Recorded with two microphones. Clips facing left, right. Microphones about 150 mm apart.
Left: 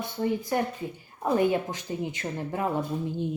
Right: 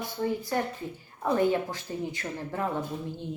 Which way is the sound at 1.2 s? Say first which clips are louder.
Left 1 dB; 15° left (ahead or behind).